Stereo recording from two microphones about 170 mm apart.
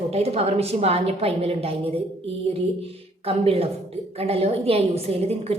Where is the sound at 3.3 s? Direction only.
35° right (ahead or behind).